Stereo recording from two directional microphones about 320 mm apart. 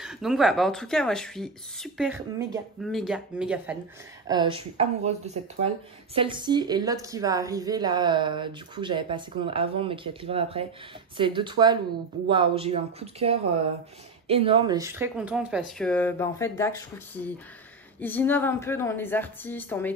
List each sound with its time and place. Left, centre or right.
0.0 s speech: centre
4.3 s speech: centre
18.0 s a woman's voice: centre